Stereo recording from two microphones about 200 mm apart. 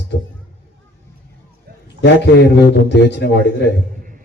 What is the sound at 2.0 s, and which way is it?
Speech, 60° left (ahead or behind).